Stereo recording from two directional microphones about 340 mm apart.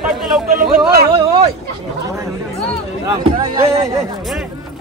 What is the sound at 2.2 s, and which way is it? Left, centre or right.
Chatter, centre.